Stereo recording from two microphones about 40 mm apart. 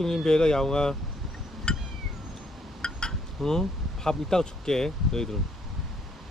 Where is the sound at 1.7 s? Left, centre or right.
Left.